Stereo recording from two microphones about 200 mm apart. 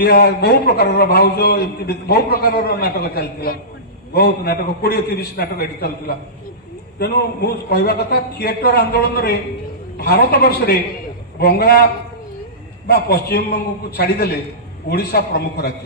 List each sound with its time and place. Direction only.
0.0 s a man's voice: 50° left (ahead or behind)
12.8 s a man's voice: 50° left (ahead or behind)